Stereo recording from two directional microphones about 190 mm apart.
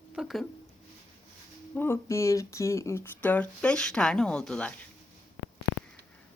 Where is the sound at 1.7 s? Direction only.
10° left (ahead or behind).